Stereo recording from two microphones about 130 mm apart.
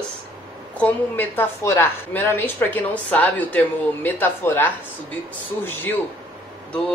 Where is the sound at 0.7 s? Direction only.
15° left (ahead or behind).